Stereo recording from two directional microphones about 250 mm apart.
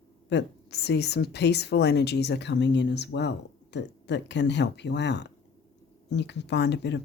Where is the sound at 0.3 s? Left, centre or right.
Left.